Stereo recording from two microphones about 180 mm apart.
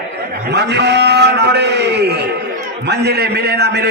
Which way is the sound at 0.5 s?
70° right (ahead or behind).